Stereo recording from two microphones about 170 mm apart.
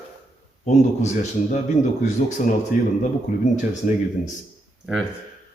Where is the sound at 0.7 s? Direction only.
45° left (ahead or behind).